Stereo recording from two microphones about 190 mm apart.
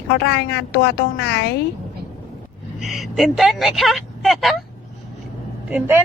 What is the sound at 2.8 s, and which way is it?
Speech, centre (ahead or behind).